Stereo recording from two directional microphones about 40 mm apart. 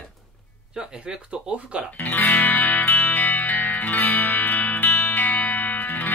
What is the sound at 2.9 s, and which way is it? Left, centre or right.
Music, left.